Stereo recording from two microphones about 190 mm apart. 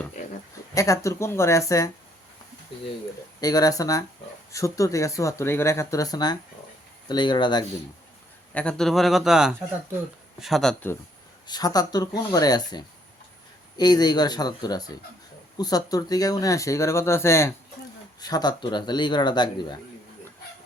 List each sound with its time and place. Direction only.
0.7 s speech: 15° left (ahead or behind)
3.4 s speech: 20° left (ahead or behind)
8.5 s speech: 5° left (ahead or behind)
11.4 s speech: 20° left (ahead or behind)